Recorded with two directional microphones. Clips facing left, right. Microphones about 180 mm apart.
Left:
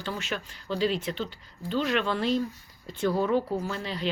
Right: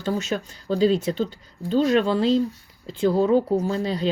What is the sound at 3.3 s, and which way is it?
Speech, 40° right (ahead or behind).